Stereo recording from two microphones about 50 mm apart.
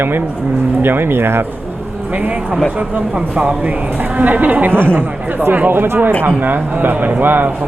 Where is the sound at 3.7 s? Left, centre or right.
Right.